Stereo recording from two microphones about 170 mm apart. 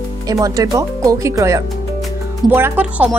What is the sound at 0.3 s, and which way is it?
Speech, 20° right (ahead or behind).